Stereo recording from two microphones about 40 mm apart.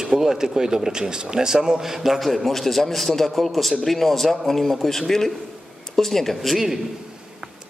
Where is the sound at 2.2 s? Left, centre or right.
Centre.